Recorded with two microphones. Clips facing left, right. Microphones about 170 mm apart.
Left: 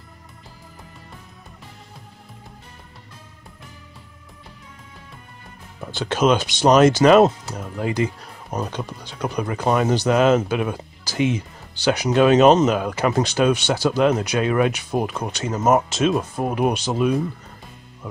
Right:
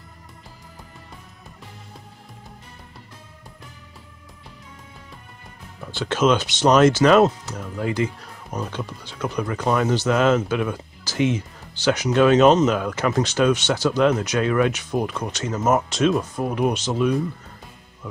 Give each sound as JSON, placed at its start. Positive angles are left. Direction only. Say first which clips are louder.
{"t": 5.9, "sound": "speech", "louder": "left 1 dB", "side_deg": 15}
{"t": 15.9, "sound": "speech", "louder": "even", "side_deg": 5}